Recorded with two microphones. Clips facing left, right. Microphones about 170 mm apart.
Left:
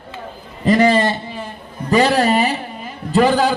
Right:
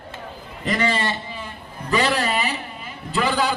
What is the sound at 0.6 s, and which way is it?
A man's voice, 40° left (ahead or behind).